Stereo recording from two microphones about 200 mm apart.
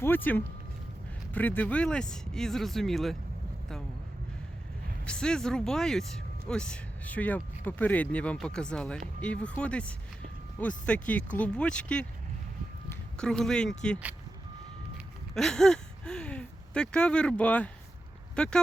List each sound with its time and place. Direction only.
0.0 s speech: 10° left (ahead or behind)
5.0 s speech: 5° left (ahead or behind)
15.4 s speech: centre (ahead or behind)